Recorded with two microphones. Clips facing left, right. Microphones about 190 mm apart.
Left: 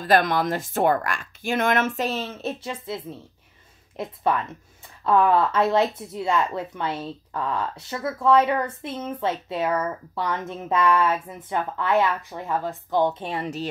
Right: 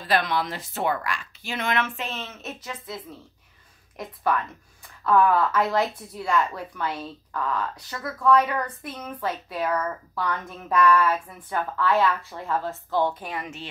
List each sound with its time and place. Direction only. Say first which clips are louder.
0.0 s speech: left 5 dB; 45° left (ahead or behind)